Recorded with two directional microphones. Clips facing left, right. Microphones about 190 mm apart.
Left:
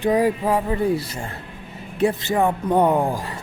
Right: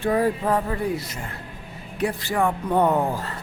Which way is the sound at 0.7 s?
30° left (ahead or behind).